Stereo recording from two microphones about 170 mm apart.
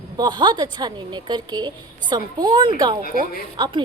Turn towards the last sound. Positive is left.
turn(degrees=-25)  # may be behind; listen again after turning